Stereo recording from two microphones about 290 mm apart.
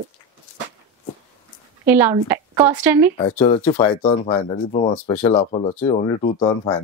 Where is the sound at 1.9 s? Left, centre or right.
Centre.